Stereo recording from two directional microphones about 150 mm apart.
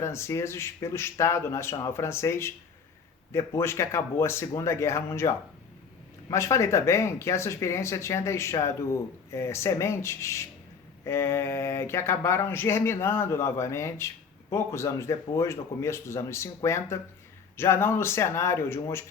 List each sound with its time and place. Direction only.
0.0 s speech: 20° left (ahead or behind)
6.3 s speech: 20° left (ahead or behind)